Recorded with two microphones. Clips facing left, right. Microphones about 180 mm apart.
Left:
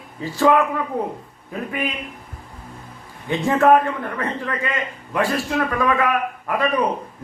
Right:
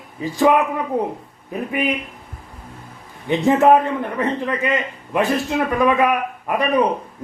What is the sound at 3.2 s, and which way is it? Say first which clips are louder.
A man's voice: right 2 dB; 20° right (ahead or behind).